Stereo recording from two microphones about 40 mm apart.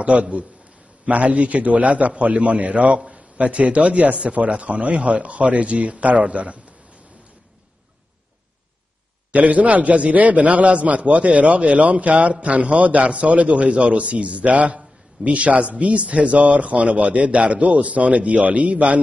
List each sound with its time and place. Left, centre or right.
0.0 s a man's voice: right
3.0 s a sound: right
3.3 s a man's voice: right
9.3 s a man's voice: right